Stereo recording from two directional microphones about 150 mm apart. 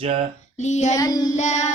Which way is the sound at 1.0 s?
25° left (ahead or behind).